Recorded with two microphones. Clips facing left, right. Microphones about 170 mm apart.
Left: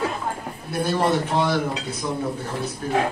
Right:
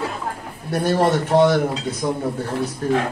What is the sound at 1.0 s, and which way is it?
Speech, 70° right (ahead or behind).